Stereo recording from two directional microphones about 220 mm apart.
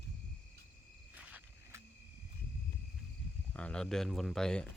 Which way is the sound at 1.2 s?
10° right (ahead or behind).